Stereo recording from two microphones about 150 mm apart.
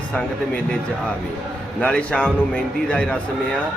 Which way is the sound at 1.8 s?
5° left (ahead or behind).